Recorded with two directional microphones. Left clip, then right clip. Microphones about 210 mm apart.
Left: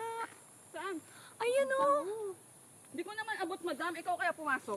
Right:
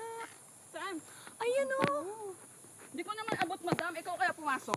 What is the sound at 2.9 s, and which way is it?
Speech, 45° right (ahead or behind).